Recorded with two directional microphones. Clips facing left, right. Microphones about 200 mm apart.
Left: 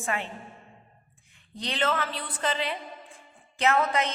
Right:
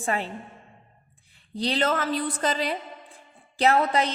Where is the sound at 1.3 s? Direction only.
35° right (ahead or behind).